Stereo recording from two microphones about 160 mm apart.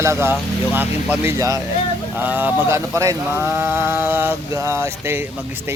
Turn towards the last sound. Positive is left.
turn(degrees=-15)  # may be behind; listen again after turning